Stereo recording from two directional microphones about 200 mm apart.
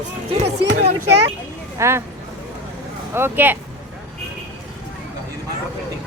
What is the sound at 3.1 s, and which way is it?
Speech, 10° right (ahead or behind).